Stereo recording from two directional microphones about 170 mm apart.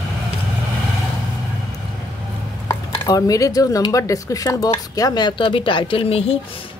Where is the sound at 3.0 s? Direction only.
20° left (ahead or behind).